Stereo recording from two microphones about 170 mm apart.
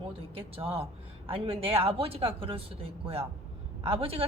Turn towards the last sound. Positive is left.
turn(degrees=-35)  # may be behind; listen again after turning